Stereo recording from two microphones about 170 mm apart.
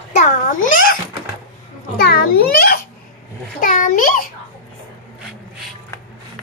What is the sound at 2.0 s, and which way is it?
Speech, 65° left (ahead or behind).